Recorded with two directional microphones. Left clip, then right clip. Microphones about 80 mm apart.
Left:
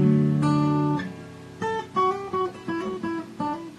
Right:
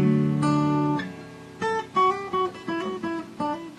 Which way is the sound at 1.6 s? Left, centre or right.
Centre.